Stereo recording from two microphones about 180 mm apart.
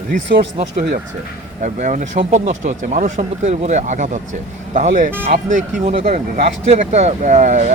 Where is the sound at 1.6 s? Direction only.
45° right (ahead or behind).